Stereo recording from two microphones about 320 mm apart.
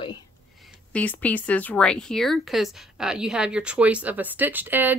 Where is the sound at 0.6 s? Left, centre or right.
Centre.